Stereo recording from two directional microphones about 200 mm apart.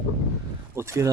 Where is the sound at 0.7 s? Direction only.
15° right (ahead or behind).